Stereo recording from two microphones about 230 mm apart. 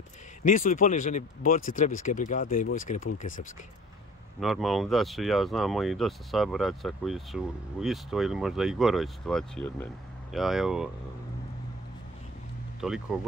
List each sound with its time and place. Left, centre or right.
0.4 s speech: left
4.4 s speech: centre
12.8 s speech: centre